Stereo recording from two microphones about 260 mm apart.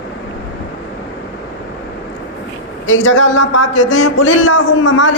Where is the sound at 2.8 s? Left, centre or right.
Left.